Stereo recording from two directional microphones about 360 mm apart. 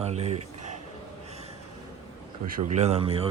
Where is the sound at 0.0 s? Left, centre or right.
Centre.